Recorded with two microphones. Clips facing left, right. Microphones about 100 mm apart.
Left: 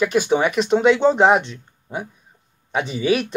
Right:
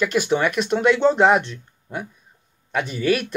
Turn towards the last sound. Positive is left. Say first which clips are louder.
# left 1 dB
turn(degrees=20)  # may be behind; listen again after turning